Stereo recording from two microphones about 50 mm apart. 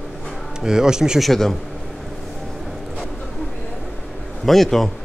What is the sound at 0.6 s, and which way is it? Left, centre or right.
Speech, centre.